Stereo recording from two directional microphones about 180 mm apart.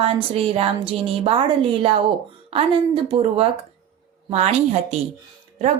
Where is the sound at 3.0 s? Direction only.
30° right (ahead or behind).